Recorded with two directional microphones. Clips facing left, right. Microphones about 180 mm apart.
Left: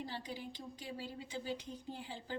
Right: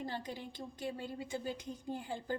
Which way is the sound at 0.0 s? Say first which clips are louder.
Right 3 dB; 50° right (ahead or behind).